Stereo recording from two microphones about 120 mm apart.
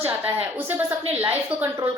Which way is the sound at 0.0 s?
15° right (ahead or behind).